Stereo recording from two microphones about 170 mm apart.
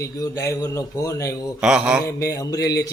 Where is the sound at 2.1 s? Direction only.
20° left (ahead or behind).